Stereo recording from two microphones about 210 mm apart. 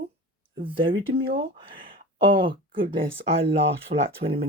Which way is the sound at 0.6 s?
25° right (ahead or behind).